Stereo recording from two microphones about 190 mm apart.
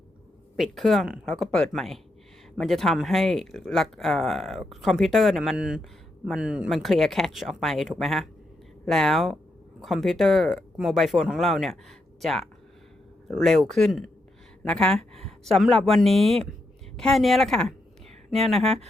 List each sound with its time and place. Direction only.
0.5 s speech: centre (ahead or behind)
18.6 s speech: 35° right (ahead or behind)